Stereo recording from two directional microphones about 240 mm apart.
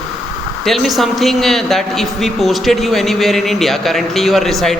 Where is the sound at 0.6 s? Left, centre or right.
Centre.